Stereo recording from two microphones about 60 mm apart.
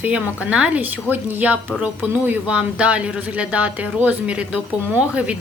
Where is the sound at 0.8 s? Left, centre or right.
Right.